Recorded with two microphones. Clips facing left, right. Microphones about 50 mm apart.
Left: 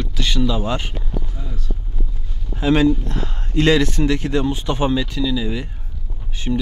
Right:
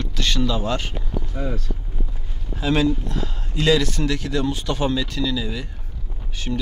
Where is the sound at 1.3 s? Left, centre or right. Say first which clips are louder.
Right 8 dB; right.